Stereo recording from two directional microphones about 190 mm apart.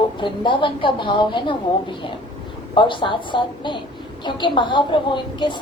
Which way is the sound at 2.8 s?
25° left (ahead or behind).